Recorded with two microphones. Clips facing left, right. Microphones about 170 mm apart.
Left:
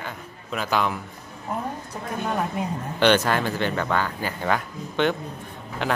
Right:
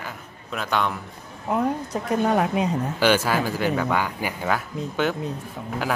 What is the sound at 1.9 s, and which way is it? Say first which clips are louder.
Speech: right 5 dB; 90° right.